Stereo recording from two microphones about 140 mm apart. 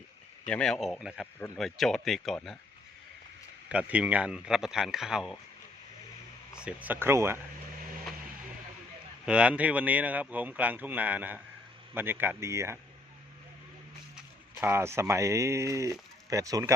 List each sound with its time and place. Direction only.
0.4 s speech: 5° left (ahead or behind)
3.7 s speech: 10° right (ahead or behind)
6.5 s speech: 5° right (ahead or behind)
9.2 s speech: 10° right (ahead or behind)
14.2 s speech: 15° right (ahead or behind)